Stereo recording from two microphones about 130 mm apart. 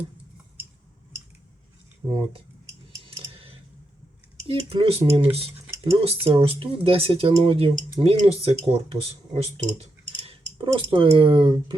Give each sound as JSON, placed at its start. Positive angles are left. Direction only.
{"t": 2.0, "sound": "speech", "side_deg": -25}
{"t": 3.0, "sound": "a sound", "side_deg": -45}
{"t": 4.4, "sound": "speech", "side_deg": -45}